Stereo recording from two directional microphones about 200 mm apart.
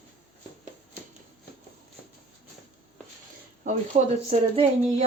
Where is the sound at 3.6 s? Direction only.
35° right (ahead or behind).